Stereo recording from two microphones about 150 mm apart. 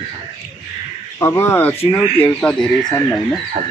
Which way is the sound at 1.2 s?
15° left (ahead or behind).